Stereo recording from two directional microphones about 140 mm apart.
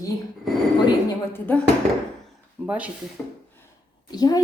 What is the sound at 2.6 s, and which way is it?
Speech, 10° right (ahead or behind).